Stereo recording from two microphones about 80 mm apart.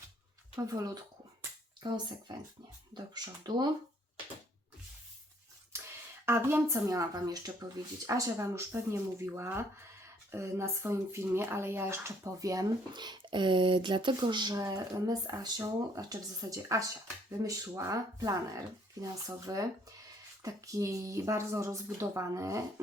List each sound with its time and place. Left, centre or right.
0.5 s speech: right
1.8 s speech: right
6.2 s speech: right
12.9 s speech: right
14.5 s speech: right